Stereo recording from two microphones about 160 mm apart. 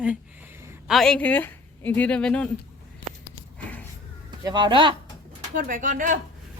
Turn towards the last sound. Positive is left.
turn(degrees=-55)  # may be behind; listen again after turning